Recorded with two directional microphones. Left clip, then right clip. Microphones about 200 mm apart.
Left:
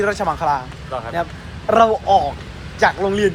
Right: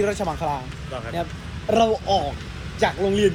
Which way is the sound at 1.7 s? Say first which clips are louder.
Left 6 dB; 20° left (ahead or behind).